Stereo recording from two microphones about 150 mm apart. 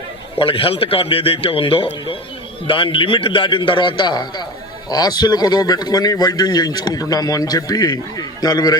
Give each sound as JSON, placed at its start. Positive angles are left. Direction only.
{"t": 0.3, "sound": "a man's voice", "side_deg": 35}